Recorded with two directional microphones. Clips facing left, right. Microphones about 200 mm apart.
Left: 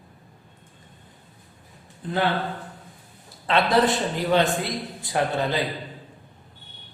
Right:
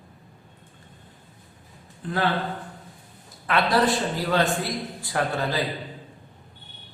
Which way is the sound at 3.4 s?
25° left (ahead or behind).